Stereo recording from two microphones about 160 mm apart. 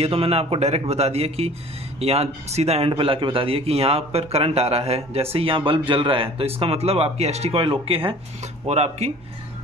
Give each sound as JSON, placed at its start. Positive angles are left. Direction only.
{"t": 0.0, "sound": "a man's voice", "side_deg": -40}